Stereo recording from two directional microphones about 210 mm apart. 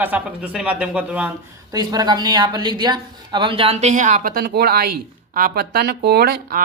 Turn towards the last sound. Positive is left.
turn(degrees=-45)  # may be behind; listen again after turning